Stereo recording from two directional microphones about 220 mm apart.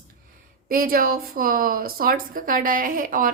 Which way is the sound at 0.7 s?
40° right (ahead or behind).